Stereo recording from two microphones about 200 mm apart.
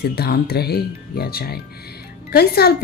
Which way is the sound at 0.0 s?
55° left (ahead or behind).